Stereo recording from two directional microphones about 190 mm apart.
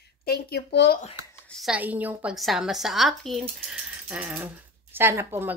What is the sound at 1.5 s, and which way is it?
A woman's voice, centre (ahead or behind).